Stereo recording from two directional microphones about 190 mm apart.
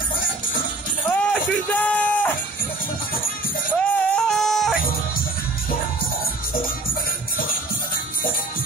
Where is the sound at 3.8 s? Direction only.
5° left (ahead or behind).